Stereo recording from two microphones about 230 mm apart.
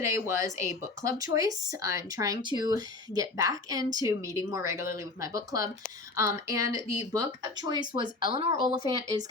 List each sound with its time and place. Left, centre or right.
0.0 s speech: centre